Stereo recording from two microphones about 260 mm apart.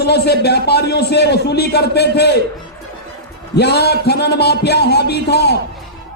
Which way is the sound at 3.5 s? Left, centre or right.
Left.